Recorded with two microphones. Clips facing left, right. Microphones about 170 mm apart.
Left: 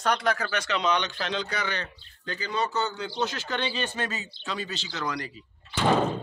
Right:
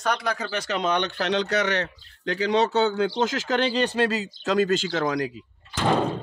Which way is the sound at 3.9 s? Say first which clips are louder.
Right 9 dB; 35° right (ahead or behind).